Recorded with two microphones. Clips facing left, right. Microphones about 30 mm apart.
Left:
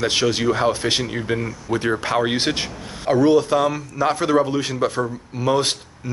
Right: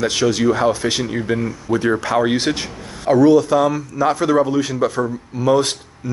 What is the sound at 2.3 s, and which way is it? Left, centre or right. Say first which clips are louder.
Speech: right 2 dB; left.